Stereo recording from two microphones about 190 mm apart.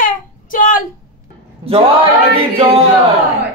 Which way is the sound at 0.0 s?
45° left (ahead or behind).